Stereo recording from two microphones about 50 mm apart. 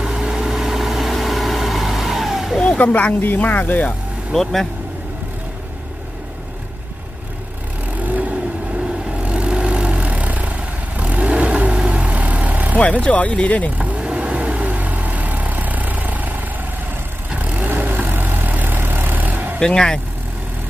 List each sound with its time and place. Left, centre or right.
0.0 s vehicle: centre
2.7 s speech: left
4.3 s speech: centre
8.0 s vehicle: right
13.0 s speech: left
13.7 s vehicle: right
17.7 s vehicle: right
19.5 s speech: centre